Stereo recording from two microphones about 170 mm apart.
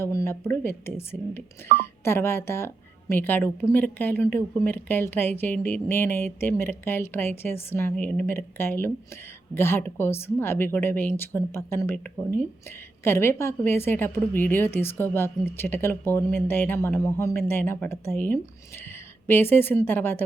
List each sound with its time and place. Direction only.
0.0 s a woman's voice: 15° left (ahead or behind)